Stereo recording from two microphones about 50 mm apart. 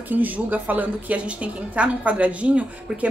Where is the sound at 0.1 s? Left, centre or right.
Right.